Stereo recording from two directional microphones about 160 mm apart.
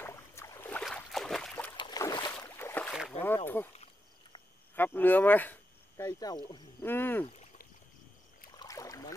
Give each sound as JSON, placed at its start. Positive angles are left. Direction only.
{"t": 0.0, "sound": "boat", "side_deg": 15}
{"t": 0.8, "sound": "boat", "side_deg": 0}
{"t": 1.8, "sound": "boat", "side_deg": 25}
{"t": 3.1, "sound": "a sound", "side_deg": 10}
{"t": 3.4, "sound": "speech", "side_deg": 15}
{"t": 3.7, "sound": "a sound", "side_deg": 40}
{"t": 4.7, "sound": "speech", "side_deg": 10}
{"t": 6.8, "sound": "speech", "side_deg": 15}
{"t": 8.5, "sound": "boat", "side_deg": 20}